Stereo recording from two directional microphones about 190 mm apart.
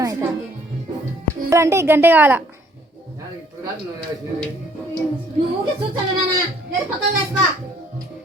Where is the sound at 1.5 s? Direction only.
15° right (ahead or behind).